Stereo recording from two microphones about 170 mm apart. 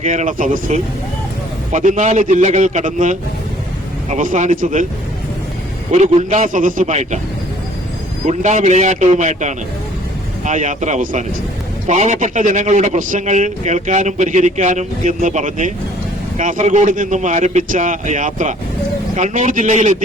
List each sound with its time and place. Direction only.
0.0 s a man's voice: 45° right (ahead or behind)
5.9 s a man's voice: 40° right (ahead or behind)
8.3 s a man's voice: 45° right (ahead or behind)